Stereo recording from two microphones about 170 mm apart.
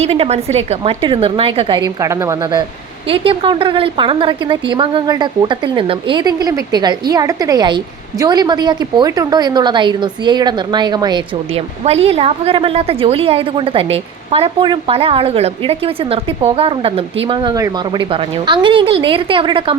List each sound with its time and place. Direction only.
0.0 s a woman's voice: 40° right (ahead or behind)
11.9 s a woman's voice: 35° right (ahead or behind)